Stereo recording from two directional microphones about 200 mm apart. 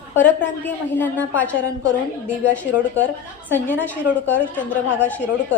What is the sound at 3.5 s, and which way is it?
A woman's voice, 10° left (ahead or behind).